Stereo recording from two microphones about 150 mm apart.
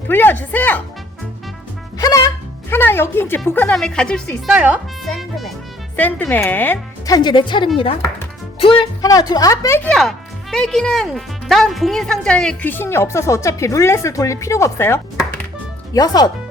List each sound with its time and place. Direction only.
0.1 s speech: 15° left (ahead or behind)
2.0 s speech: 25° left (ahead or behind); by 4.5 s 5° left (ahead or behind)
4.5 s speech: 10° right (ahead or behind)
6.0 s speech: 10° left (ahead or behind)
7.1 s speech: 30° left (ahead or behind)
9.0 s speech: 25° left (ahead or behind)
9.9 s speech: centre (ahead or behind); by 16.3 s 25° left (ahead or behind)